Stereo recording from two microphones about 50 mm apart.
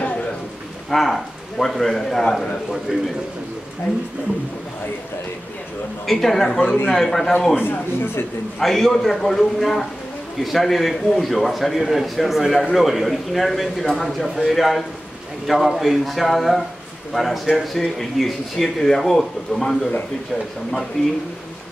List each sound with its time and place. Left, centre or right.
0.8 s a man's voice: centre
6.0 s a man's voice: centre
7.5 s speech: left
8.5 s speech: centre
21.0 s a man's voice: centre